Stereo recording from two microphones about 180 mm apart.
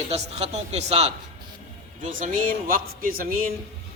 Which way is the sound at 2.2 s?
50° right (ahead or behind).